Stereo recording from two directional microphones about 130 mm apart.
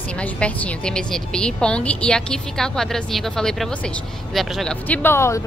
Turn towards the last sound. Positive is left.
turn(degrees=20)  # may be behind; listen again after turning